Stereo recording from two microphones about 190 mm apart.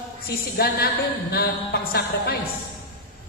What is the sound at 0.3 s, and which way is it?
A man's voice, 55° left (ahead or behind).